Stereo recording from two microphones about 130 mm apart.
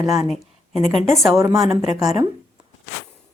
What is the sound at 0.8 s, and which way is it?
Speech, 60° left (ahead or behind).